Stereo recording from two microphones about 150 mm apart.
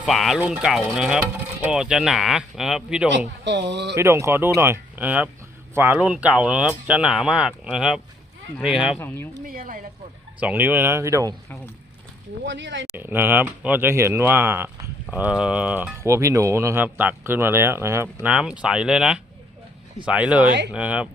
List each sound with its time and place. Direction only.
0.0 s speech: centre (ahead or behind)
3.9 s speech: 20° right (ahead or behind)
9.0 s speech: 15° left (ahead or behind)
9.4 s speech: 65° right (ahead or behind)
10.4 s speech: 10° right (ahead or behind)
13.0 s speech: 15° right (ahead or behind)